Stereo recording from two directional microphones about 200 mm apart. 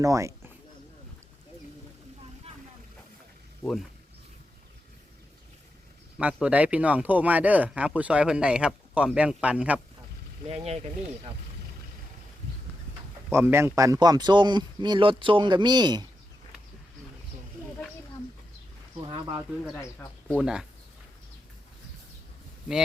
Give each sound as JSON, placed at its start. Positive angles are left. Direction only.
{"t": 0.0, "sound": "speech", "side_deg": -15}
{"t": 3.6, "sound": "speech", "side_deg": 0}
{"t": 6.1, "sound": "speech", "side_deg": -5}
{"t": 10.5, "sound": "speech", "side_deg": -30}
{"t": 13.3, "sound": "speech", "side_deg": -10}
{"t": 19.1, "sound": "speech", "side_deg": -25}
{"t": 19.7, "sound": "speech", "side_deg": 10}
{"t": 20.4, "sound": "speech", "side_deg": -5}